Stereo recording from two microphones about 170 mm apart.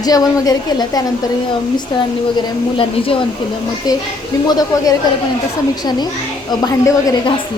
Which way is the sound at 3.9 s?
25° left (ahead or behind).